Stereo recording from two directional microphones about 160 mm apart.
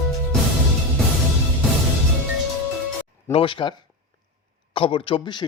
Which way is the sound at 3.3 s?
35° left (ahead or behind).